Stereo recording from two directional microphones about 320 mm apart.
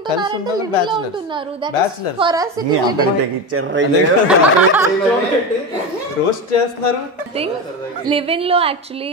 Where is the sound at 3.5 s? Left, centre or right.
Right.